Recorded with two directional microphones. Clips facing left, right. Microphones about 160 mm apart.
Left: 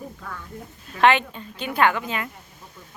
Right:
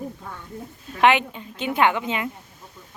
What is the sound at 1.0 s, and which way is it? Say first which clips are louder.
A woman's voice: even; 15° right (ahead or behind).